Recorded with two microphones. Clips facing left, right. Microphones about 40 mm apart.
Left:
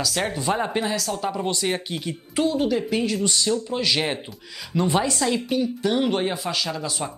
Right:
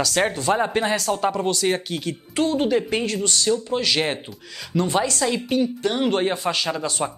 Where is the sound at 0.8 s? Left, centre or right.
Right.